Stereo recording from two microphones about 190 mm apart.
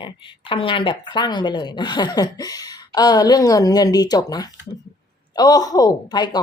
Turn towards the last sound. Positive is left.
turn(degrees=20)  # may be behind; listen again after turning